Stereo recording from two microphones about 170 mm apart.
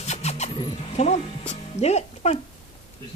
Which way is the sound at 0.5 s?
40° left (ahead or behind).